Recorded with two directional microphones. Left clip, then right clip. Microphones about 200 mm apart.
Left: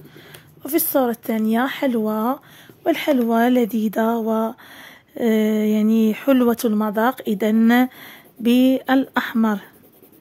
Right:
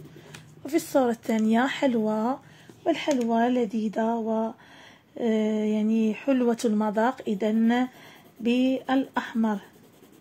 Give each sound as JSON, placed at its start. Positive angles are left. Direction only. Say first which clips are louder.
{"t": 0.7, "sound": "speech", "louder": "left 4 dB", "side_deg": 25}
{"t": 2.8, "sound": "speech", "louder": "left 6 dB", "side_deg": 35}